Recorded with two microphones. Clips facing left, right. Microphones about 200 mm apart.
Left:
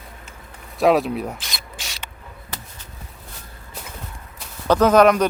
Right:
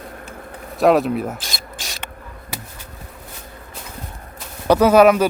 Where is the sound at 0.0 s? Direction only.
55° right (ahead or behind).